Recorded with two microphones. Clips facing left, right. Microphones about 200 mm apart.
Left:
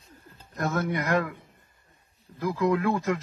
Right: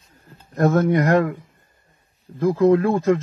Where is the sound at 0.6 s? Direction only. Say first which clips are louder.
Right 11 dB; 45° right (ahead or behind).